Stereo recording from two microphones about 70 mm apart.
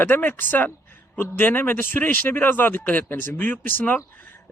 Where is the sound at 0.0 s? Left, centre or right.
Left.